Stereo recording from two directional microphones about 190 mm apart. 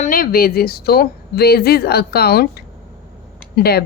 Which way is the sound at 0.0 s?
50° left (ahead or behind).